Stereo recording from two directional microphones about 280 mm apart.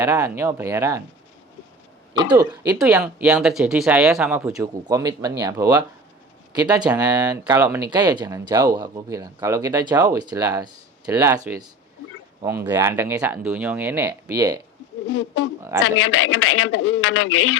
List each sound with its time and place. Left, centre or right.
0.0 s speech: centre
2.1 s speech: centre
15.0 s speech: left